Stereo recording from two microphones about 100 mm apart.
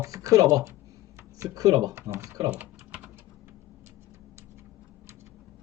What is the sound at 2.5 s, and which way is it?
Typing, 15° right (ahead or behind).